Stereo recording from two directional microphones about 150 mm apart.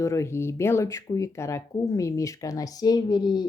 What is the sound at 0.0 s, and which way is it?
Speech, 20° left (ahead or behind).